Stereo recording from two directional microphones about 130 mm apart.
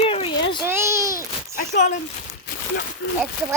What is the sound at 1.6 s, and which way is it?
Speech, 70° left (ahead or behind).